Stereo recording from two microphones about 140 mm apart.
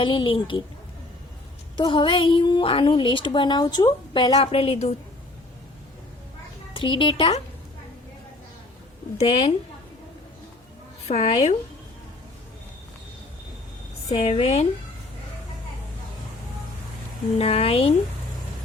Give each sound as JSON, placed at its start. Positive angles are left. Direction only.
{"t": 0.0, "sound": "a woman's voice", "side_deg": 40}
{"t": 1.7, "sound": "a woman's voice", "side_deg": 35}
{"t": 6.7, "sound": "a woman's voice", "side_deg": 40}
{"t": 9.1, "sound": "speech", "side_deg": 45}
{"t": 11.1, "sound": "speech", "side_deg": 50}
{"t": 14.2, "sound": "speech", "side_deg": 45}
{"t": 17.3, "sound": "speech", "side_deg": 45}